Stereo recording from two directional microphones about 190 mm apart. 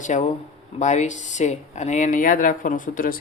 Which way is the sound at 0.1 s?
40° left (ahead or behind).